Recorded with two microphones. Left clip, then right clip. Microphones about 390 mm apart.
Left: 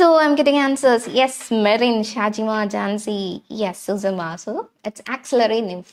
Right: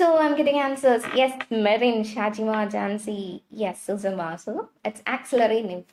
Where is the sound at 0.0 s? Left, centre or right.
Left.